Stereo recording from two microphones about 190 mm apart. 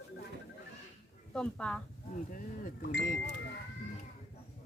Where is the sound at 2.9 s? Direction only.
60° left (ahead or behind).